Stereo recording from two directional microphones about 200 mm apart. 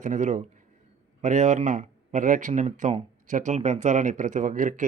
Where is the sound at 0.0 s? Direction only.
40° right (ahead or behind).